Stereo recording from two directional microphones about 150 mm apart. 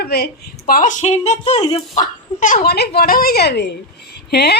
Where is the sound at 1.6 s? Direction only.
30° left (ahead or behind).